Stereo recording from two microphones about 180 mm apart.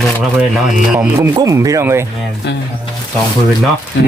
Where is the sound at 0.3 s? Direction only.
Centre (ahead or behind).